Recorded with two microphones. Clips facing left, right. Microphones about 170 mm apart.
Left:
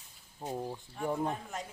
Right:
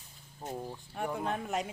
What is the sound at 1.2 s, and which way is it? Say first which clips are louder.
Speech: right 3 dB; 75° right (ahead or behind).